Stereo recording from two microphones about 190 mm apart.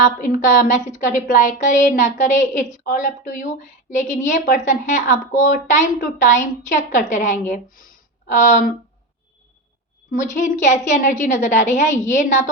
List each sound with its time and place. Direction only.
0.0 s a woman's voice: 40° left (ahead or behind)
10.3 s a woman's voice: 40° left (ahead or behind)